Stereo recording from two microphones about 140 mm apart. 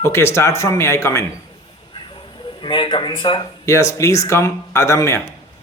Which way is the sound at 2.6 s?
35° left (ahead or behind).